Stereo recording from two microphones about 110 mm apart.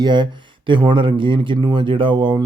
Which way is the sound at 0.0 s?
45° right (ahead or behind).